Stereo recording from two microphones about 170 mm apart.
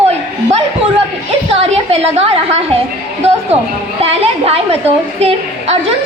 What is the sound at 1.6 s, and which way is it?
Speech, 35° right (ahead or behind).